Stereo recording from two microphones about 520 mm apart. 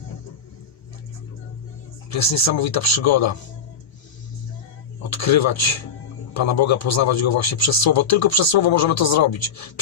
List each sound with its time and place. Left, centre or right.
2.2 s a man's voice: left
5.1 s a man's voice: left